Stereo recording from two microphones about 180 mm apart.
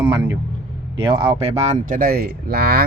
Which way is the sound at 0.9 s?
30° right (ahead or behind).